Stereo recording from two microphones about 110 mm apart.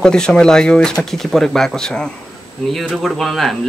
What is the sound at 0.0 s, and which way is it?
Speech, 5° left (ahead or behind).